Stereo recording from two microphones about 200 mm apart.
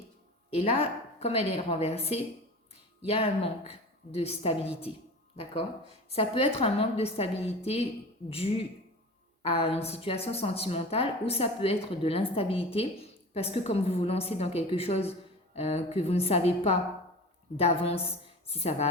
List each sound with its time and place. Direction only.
0.5 s a woman's voice: 30° left (ahead or behind)
6.1 s a woman's voice: 30° left (ahead or behind)